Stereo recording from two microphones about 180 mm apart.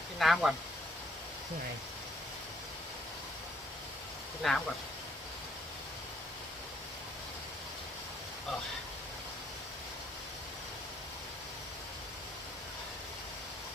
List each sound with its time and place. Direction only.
0.2 s speech: centre (ahead or behind)
4.4 s speech: centre (ahead or behind)